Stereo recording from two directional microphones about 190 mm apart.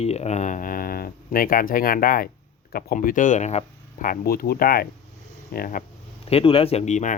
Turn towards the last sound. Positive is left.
turn(degrees=40)  # may be behind; listen again after turning